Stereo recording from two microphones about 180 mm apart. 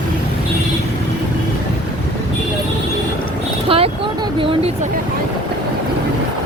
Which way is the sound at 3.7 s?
30° right (ahead or behind).